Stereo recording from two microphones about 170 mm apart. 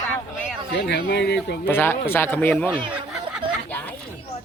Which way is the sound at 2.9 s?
5° right (ahead or behind).